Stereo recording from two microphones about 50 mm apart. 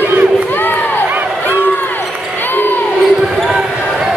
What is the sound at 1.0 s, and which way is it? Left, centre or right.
Crowd, right.